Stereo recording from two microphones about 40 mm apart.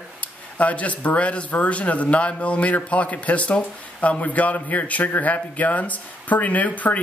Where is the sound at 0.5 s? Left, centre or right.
Left.